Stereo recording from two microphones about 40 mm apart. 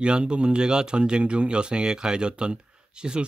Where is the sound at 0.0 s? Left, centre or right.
Right.